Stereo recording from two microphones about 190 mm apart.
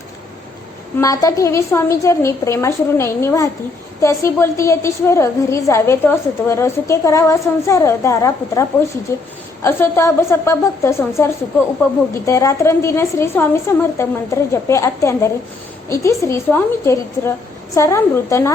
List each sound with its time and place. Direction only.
0.9 s a woman's voice: 20° left (ahead or behind)